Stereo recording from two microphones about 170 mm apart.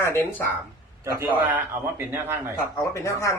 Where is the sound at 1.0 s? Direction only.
10° right (ahead or behind).